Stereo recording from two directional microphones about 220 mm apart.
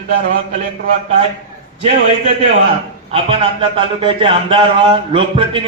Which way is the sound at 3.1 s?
25° right (ahead or behind).